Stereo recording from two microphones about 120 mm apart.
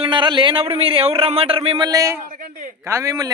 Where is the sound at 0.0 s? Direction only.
40° right (ahead or behind).